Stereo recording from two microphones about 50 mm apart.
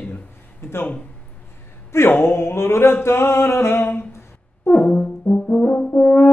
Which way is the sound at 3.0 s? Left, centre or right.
Left.